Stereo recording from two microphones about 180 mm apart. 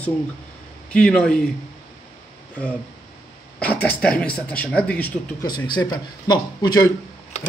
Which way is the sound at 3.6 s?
10° left (ahead or behind).